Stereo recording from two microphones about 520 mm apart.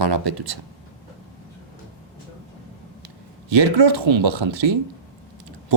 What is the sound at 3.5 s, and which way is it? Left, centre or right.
Speech, right.